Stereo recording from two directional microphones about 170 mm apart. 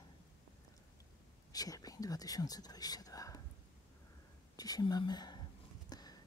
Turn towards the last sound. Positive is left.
turn(degrees=25)  # may be behind; listen again after turning